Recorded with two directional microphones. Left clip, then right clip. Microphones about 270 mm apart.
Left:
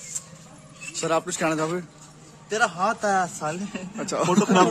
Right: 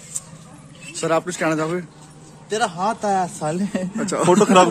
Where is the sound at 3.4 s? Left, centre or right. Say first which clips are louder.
Right 6 dB; right.